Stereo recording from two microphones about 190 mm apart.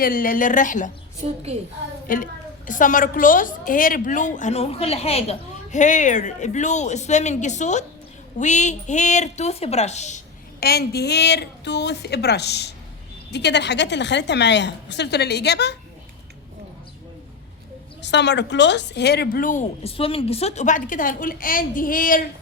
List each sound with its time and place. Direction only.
0.0 s a woman's voice: 50° left (ahead or behind)
2.0 s a woman's voice: 45° left (ahead or behind)
10.6 s a woman's voice: 55° left (ahead or behind)
18.0 s a woman's voice: 65° left (ahead or behind); by 22.2 s 45° left (ahead or behind)